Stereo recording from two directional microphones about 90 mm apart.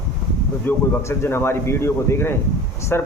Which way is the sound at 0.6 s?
25° left (ahead or behind).